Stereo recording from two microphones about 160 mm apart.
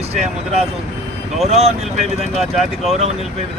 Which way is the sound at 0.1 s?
40° right (ahead or behind).